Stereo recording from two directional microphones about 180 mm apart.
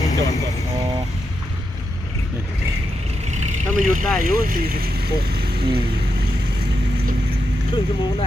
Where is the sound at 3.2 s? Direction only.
40° right (ahead or behind).